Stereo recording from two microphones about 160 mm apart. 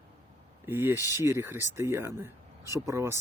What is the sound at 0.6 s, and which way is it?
Speech, 15° right (ahead or behind).